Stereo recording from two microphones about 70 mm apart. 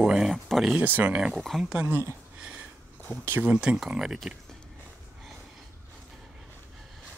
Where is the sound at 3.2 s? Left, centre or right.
Right.